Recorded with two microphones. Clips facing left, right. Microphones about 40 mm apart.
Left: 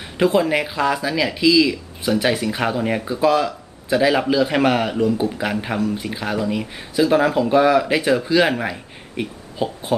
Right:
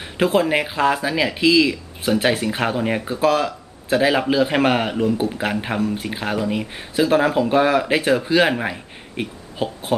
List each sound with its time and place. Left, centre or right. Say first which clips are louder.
0.0 s speech: left 1 dB; centre